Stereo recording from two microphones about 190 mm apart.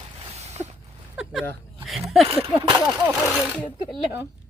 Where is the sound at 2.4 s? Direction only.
15° right (ahead or behind).